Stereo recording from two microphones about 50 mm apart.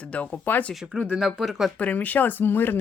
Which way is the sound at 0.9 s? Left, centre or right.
Right.